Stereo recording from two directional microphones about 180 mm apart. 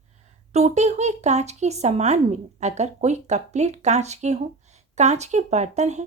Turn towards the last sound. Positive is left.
turn(degrees=-40)  # may be behind; listen again after turning